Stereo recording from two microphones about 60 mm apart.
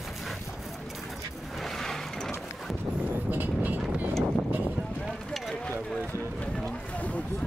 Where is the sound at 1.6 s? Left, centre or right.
Centre.